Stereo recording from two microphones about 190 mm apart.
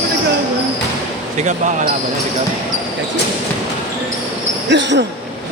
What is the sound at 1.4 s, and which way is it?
Speech, 40° right (ahead or behind).